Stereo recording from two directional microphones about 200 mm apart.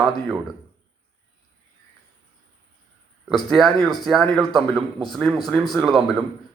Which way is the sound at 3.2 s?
Centre (ahead or behind).